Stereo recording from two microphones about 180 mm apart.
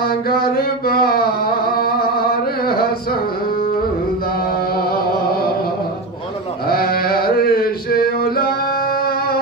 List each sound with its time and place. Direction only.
0.0 s music: 55° left (ahead or behind)
6.7 s male singing: 55° left (ahead or behind)